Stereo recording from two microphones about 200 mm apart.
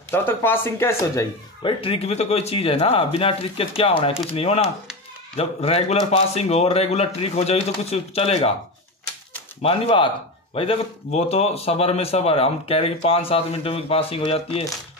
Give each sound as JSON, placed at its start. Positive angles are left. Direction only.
{"t": 0.1, "sound": "speech", "side_deg": 10}
{"t": 1.6, "sound": "speech", "side_deg": 25}
{"t": 5.3, "sound": "a man's voice", "side_deg": 30}
{"t": 9.6, "sound": "speech", "side_deg": 30}